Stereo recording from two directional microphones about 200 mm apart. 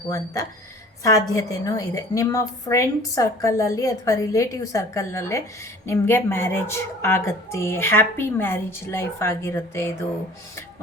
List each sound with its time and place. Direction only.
1.0 s a woman's voice: 15° left (ahead or behind)